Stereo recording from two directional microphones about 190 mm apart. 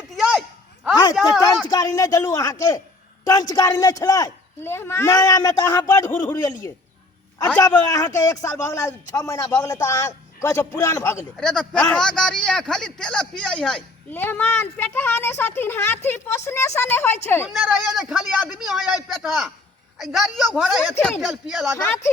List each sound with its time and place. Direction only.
1.2 s a man's voice: 5° right (ahead or behind)
1.6 s speech: 20° left (ahead or behind)
11.3 s a man's voice: 5° left (ahead or behind)
17.5 s a man's voice: centre (ahead or behind)
21.8 s speech: 15° left (ahead or behind)